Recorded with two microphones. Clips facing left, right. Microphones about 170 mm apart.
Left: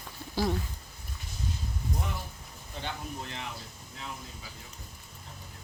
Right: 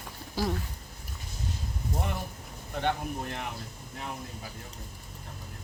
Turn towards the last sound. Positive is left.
turn(degrees=-55)  # may be behind; listen again after turning